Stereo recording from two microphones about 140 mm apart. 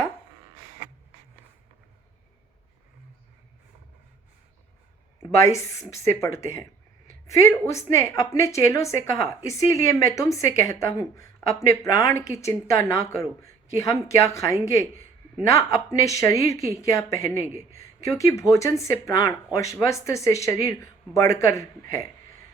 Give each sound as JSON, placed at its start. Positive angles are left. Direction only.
{"t": 5.3, "sound": "a woman's voice", "side_deg": 20}